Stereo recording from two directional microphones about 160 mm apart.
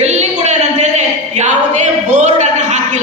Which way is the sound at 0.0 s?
45° right (ahead or behind).